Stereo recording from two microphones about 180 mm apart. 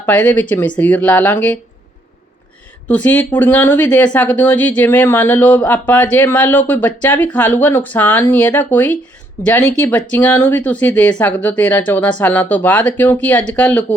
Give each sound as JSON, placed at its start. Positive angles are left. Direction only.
{"t": 0.0, "sound": "speech", "side_deg": 10}
{"t": 2.8, "sound": "speech", "side_deg": 10}